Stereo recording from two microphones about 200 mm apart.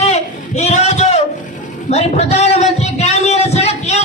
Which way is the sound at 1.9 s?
35° left (ahead or behind).